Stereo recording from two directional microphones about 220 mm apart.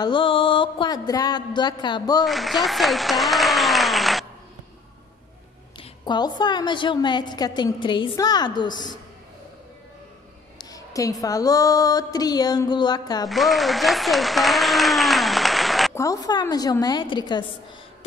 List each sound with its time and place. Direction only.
0.0 s a woman's voice: 20° left (ahead or behind)
2.2 s speech: centre (ahead or behind)
5.8 s a woman's voice: 20° left (ahead or behind)
10.6 s a woman's voice: 15° left (ahead or behind)
13.3 s speech: centre (ahead or behind)
15.9 s a woman's voice: 15° left (ahead or behind)